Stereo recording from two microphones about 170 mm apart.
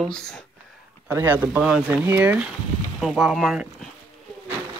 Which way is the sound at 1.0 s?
10° right (ahead or behind).